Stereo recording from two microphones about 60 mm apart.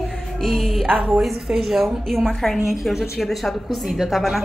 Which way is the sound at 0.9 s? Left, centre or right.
Centre.